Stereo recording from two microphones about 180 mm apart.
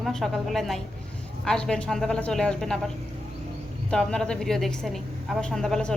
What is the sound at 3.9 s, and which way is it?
Speech, 5° left (ahead or behind).